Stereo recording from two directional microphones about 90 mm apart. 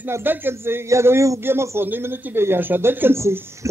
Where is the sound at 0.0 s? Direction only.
20° right (ahead or behind).